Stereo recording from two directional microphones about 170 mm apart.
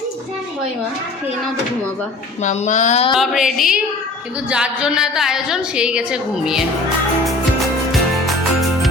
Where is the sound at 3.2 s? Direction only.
Centre (ahead or behind).